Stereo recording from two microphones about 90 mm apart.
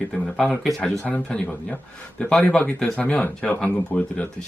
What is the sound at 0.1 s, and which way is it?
Speech, 5° left (ahead or behind).